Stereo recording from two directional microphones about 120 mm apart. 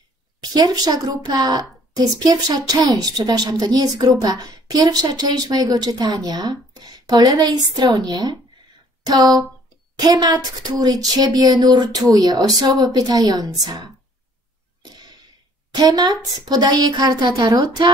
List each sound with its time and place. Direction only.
0.4 s a woman's voice: 35° right (ahead or behind)
14.8 s a sound: 35° right (ahead or behind)
15.7 s a woman's voice: 35° right (ahead or behind)